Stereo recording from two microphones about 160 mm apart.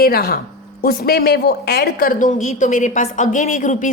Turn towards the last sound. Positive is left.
turn(degrees=55)  # may be behind; listen again after turning